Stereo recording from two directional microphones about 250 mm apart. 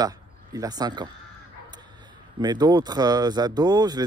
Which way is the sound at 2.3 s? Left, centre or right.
Centre.